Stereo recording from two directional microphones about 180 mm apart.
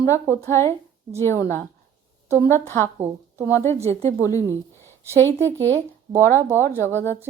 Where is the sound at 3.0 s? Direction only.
10° right (ahead or behind).